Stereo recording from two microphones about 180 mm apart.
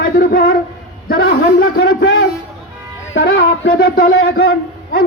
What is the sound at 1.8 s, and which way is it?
Speech, 80° left.